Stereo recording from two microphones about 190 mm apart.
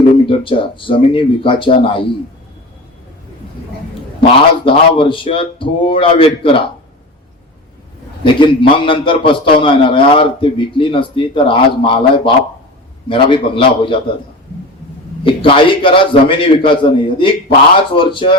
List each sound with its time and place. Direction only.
0.3 s a man's voice: 25° left (ahead or behind)
4.2 s a man's voice: 25° left (ahead or behind)
8.2 s a man's voice: 25° left (ahead or behind)
15.2 s a man's voice: 25° left (ahead or behind)